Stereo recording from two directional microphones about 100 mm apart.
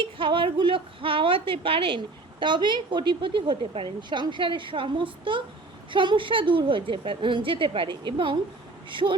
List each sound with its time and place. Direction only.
0.0 s a woman's voice: 60° right (ahead or behind)
2.4 s a woman's voice: 50° right (ahead or behind)